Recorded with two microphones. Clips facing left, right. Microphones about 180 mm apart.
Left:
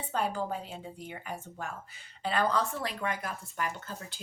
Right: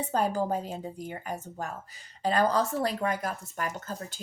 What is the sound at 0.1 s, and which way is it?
A woman's voice, 40° right (ahead or behind).